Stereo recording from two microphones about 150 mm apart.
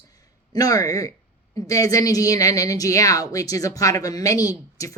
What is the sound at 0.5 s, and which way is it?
Speech, 25° left (ahead or behind).